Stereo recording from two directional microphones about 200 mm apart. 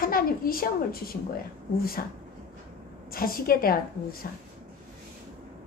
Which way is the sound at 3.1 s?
45° left (ahead or behind).